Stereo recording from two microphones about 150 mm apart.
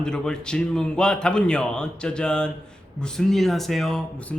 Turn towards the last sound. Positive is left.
turn(degrees=0)  # may be behind; listen again after turning